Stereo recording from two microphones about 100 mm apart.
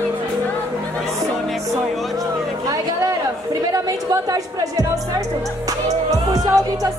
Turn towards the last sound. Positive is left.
turn(degrees=-35)  # may be behind; listen again after turning